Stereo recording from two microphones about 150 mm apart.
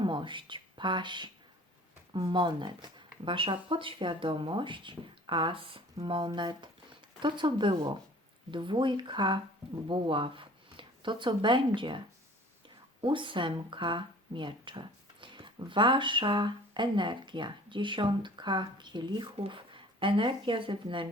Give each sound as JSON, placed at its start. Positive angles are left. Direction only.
{"t": 0.0, "sound": "speech", "side_deg": -30}